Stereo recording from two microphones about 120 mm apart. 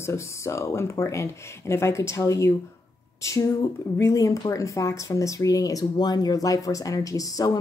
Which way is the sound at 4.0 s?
25° left (ahead or behind).